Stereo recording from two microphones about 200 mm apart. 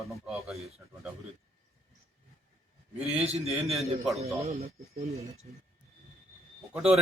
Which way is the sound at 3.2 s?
30° right (ahead or behind).